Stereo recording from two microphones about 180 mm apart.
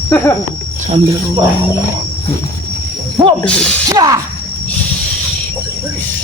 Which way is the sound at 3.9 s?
20° right (ahead or behind).